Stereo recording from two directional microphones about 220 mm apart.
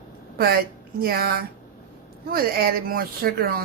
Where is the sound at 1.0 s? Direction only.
45° right (ahead or behind).